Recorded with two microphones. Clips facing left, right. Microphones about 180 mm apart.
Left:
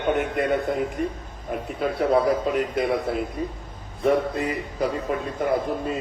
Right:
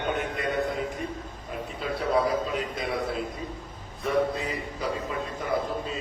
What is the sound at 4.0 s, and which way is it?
A man's voice, 55° left (ahead or behind).